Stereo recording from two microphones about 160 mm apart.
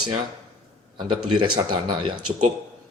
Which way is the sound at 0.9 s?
30° right (ahead or behind).